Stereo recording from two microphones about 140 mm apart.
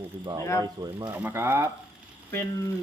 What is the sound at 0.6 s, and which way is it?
Speech, 30° right (ahead or behind).